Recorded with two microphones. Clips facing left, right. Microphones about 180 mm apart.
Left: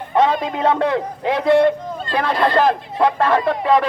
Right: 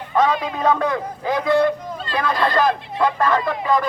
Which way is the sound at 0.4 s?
25° left (ahead or behind).